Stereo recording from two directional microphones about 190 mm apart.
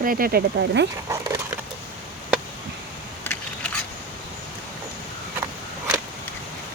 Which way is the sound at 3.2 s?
10° left (ahead or behind).